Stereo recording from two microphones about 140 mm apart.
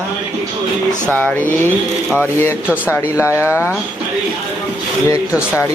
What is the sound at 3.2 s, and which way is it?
Speech, 20° left (ahead or behind).